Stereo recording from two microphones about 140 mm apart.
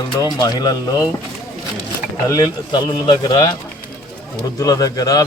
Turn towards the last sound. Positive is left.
turn(degrees=25)  # may be behind; listen again after turning